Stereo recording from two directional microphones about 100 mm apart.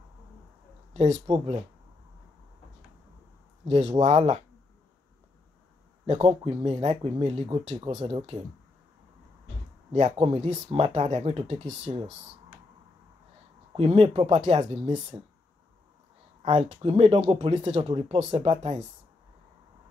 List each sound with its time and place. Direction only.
0.9 s speech: 90° right
3.6 s speech: 80° right
3.9 s speech: 65° right (ahead or behind)
6.4 s speech: 70° right (ahead or behind)
10.1 s speech: 60° right (ahead or behind)
13.7 s speech: 70° right (ahead or behind); by 14.9 s 90° right
16.4 s speech: 80° right
17.4 s speech: 50° right (ahead or behind)
17.8 s speech: 60° right (ahead or behind)